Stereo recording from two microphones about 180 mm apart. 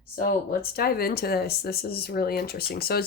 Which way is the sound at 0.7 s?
55° left (ahead or behind).